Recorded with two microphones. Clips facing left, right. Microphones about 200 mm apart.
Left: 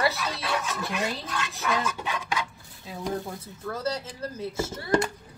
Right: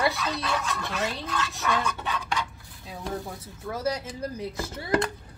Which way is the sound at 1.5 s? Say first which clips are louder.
Left 2 dB; centre (ahead or behind).